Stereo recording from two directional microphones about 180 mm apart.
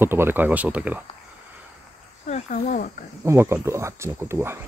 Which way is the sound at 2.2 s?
45° left (ahead or behind).